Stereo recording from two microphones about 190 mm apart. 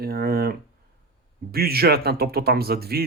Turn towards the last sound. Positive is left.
turn(degrees=-55)  # may be behind; listen again after turning